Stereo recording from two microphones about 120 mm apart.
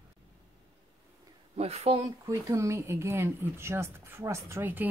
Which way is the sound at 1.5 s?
60° right (ahead or behind).